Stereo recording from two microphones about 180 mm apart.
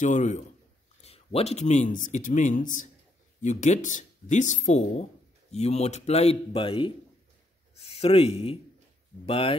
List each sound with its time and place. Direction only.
0.0 s speech: 40° left (ahead or behind)